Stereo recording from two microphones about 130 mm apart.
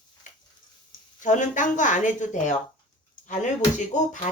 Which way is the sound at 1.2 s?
70° left (ahead or behind).